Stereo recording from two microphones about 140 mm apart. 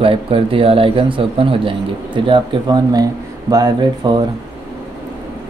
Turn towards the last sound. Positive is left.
turn(degrees=-30)  # may be behind; listen again after turning